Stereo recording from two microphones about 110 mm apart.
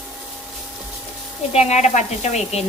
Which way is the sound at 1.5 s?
90° left.